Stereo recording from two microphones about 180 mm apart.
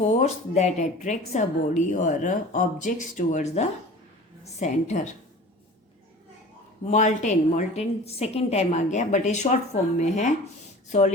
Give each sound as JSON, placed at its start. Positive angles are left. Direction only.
{"t": 0.2, "sound": "speech", "side_deg": 40}
{"t": 6.9, "sound": "speech", "side_deg": 40}